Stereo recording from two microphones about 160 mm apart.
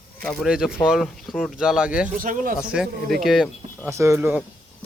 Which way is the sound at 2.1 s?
60° right (ahead or behind).